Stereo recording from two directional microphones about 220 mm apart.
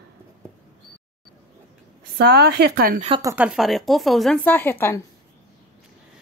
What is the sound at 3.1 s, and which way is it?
Speech, 20° right (ahead or behind).